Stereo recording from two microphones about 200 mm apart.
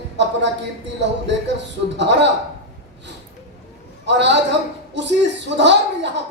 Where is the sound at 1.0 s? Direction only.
60° right (ahead or behind).